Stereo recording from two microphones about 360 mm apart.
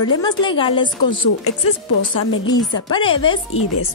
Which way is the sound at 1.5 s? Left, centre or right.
Left.